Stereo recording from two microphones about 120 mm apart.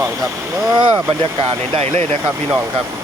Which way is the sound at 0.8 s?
40° right (ahead or behind).